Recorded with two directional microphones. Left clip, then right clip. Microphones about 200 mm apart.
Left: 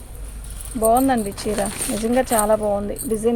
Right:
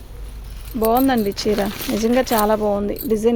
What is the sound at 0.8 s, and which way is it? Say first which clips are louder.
Speech: even; 55° right (ahead or behind).